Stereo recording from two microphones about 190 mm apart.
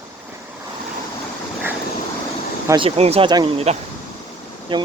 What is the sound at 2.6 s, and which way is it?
Speech, 25° right (ahead or behind).